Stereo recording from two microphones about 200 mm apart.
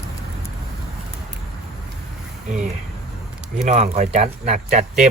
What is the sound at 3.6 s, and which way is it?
Speech, 35° right (ahead or behind).